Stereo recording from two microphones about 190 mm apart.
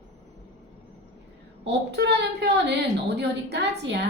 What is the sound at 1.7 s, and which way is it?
A woman's voice, 60° right (ahead or behind).